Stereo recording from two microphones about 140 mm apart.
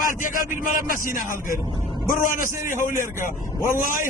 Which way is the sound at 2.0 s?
75° left (ahead or behind).